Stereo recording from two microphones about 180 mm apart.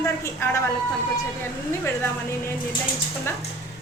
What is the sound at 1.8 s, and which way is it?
Speech, 15° left (ahead or behind).